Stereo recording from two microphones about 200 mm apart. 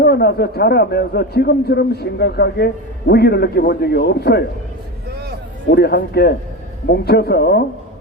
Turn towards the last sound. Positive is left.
turn(degrees=55)  # may be behind; listen again after turning